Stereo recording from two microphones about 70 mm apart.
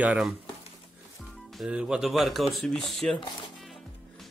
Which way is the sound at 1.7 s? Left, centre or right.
Centre.